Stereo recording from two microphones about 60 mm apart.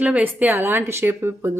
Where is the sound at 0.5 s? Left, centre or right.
Right.